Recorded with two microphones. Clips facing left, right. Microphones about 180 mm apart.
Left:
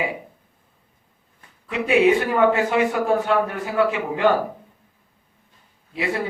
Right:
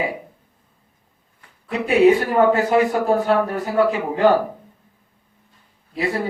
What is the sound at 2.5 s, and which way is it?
A man's voice, 40° right (ahead or behind).